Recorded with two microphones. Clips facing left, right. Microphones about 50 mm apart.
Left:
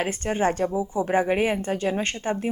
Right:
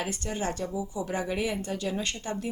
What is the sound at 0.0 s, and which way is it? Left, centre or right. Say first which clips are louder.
A woman's voice: left 8 dB; left.